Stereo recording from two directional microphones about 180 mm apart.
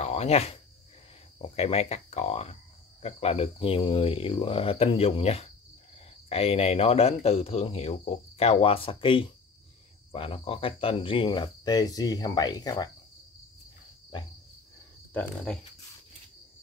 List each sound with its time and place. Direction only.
0.0 s speech: 35° left (ahead or behind)
10.1 s cricket: 30° left (ahead or behind)
15.5 s speech: 5° left (ahead or behind)